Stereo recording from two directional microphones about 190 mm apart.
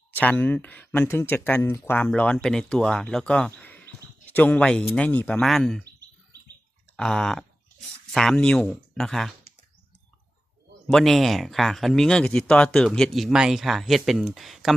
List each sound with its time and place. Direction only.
0.1 s speech: 10° left (ahead or behind)
6.9 s speech: 5° left (ahead or behind)
10.8 s speech: centre (ahead or behind)